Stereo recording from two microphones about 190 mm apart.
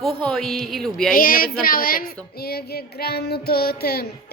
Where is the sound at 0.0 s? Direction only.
5° left (ahead or behind).